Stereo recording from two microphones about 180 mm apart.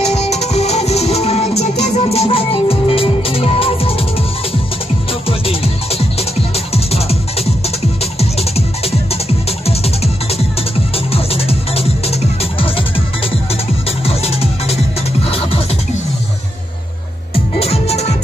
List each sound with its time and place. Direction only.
0.0 s music: 35° left (ahead or behind)
5.5 s music: 35° left (ahead or behind)
14.0 s music: 35° left (ahead or behind)
17.3 s music: 35° left (ahead or behind)